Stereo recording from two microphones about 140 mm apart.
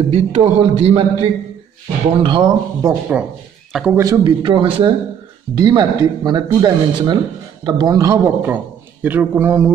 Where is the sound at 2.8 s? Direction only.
15° right (ahead or behind).